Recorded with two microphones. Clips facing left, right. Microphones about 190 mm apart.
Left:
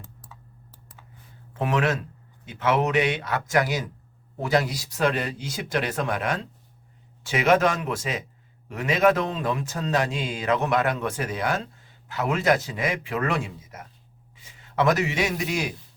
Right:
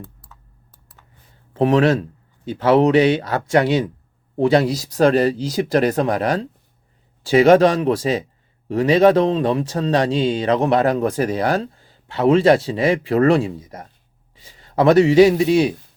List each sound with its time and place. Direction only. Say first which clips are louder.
1.5 s a man's voice: right 9 dB; 35° right (ahead or behind)